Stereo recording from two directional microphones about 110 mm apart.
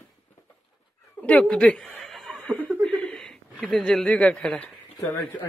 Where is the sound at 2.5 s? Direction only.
25° right (ahead or behind).